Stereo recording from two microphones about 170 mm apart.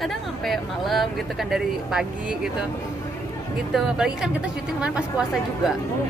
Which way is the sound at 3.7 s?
5° right (ahead or behind).